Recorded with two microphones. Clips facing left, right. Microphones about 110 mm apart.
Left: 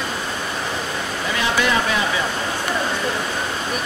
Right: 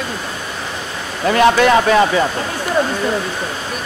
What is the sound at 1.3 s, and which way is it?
Speech, 55° right (ahead or behind).